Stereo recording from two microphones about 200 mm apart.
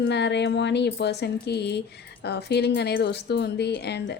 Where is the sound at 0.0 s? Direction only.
60° left (ahead or behind).